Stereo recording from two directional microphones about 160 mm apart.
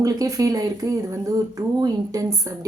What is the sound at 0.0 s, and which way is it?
Speech, 20° right (ahead or behind).